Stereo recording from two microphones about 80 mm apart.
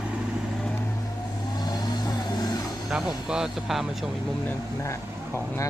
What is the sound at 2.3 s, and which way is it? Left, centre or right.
Vehicle, left.